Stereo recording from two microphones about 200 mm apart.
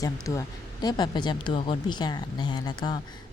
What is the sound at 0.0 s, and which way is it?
Speech, 15° left (ahead or behind).